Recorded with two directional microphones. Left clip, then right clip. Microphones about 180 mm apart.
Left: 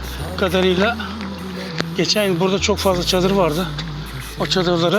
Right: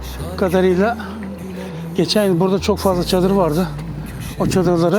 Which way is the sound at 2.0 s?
50° right (ahead or behind).